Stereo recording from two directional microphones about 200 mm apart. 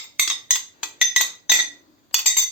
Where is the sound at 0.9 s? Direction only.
5° right (ahead or behind).